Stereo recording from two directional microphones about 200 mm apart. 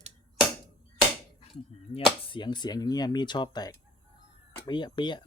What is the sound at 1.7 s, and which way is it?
Speech, 30° left (ahead or behind).